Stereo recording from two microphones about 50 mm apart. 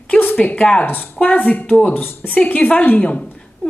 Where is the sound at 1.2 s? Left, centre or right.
Left.